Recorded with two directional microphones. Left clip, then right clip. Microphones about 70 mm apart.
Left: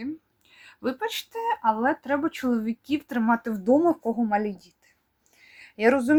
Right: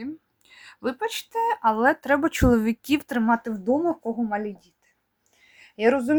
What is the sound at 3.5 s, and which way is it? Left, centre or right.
Speech, left.